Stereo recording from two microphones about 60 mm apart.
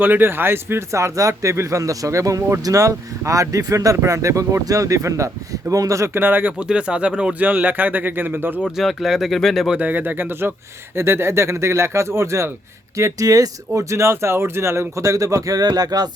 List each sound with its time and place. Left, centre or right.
0.0 s speech: right
0.9 s speech: right
3.9 s speech: right
6.1 s speech: right
6.6 s speech: centre
7.4 s speech: right
8.8 s speech: centre
9.7 s speech: right
13.0 s speech: right